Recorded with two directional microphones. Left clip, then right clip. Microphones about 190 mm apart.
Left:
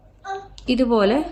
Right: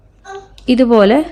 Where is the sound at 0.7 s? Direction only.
45° right (ahead or behind).